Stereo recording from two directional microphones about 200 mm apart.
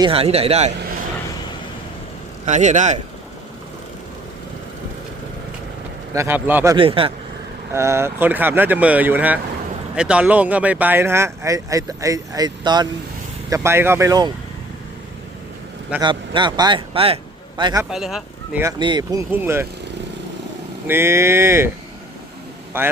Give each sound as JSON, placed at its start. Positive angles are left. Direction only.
{"t": 0.0, "sound": "speech", "side_deg": -30}
{"t": 2.5, "sound": "speech", "side_deg": -35}
{"t": 6.1, "sound": "speech", "side_deg": -10}
{"t": 6.7, "sound": "speech", "side_deg": -25}
{"t": 7.7, "sound": "speech", "side_deg": -15}
{"t": 16.0, "sound": "speech", "side_deg": -25}
{"t": 17.9, "sound": "speech", "side_deg": 0}
{"t": 18.6, "sound": "speech", "side_deg": -20}
{"t": 19.3, "sound": "speech", "side_deg": -10}
{"t": 20.8, "sound": "speech", "side_deg": -10}
{"t": 22.7, "sound": "speech", "side_deg": -10}